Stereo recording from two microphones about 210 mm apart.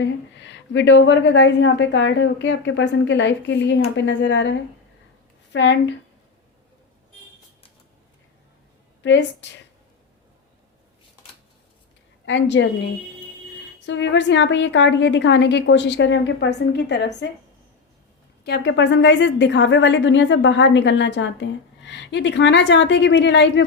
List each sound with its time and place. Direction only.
0.0 s a woman's voice: 60° left (ahead or behind)
9.0 s a woman's voice: 60° left (ahead or behind)
12.2 s a woman's voice: 60° left (ahead or behind)
13.7 s a woman's voice: 60° left (ahead or behind)
18.4 s a woman's voice: 55° left (ahead or behind)